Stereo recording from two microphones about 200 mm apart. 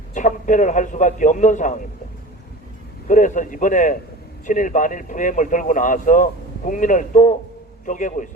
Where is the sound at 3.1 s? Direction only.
40° left (ahead or behind).